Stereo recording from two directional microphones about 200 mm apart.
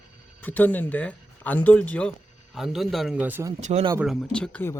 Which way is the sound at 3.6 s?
35° right (ahead or behind).